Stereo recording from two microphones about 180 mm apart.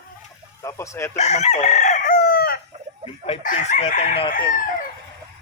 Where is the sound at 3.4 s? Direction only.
45° left (ahead or behind).